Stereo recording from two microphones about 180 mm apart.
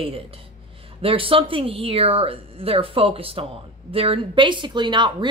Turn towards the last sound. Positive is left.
turn(degrees=-25)  # may be behind; listen again after turning